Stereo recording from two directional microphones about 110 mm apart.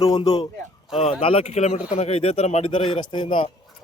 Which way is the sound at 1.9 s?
70° left (ahead or behind).